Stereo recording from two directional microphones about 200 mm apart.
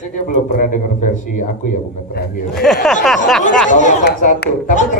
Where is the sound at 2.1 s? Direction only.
50° left (ahead or behind).